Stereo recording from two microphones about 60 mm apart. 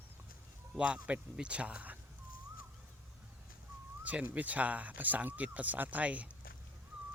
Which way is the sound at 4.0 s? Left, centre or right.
Right.